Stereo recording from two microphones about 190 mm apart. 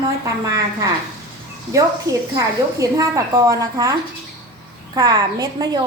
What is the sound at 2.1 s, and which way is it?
A woman's voice, 20° right (ahead or behind).